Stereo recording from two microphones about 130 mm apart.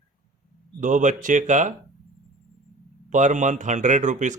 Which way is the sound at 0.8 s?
75° right (ahead or behind).